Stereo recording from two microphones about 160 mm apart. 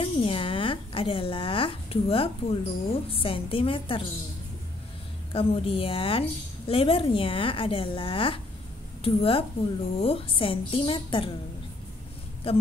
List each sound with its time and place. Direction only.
0.0 s a woman's voice: 35° left (ahead or behind)
5.3 s speech: 35° left (ahead or behind)